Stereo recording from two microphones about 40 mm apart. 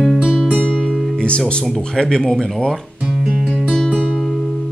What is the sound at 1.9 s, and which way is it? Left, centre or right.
Speech, centre.